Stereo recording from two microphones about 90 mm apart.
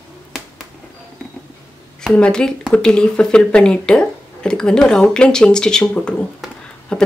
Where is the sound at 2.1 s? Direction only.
10° left (ahead or behind).